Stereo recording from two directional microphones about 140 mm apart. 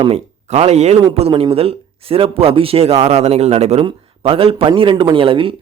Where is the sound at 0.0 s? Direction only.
50° right (ahead or behind).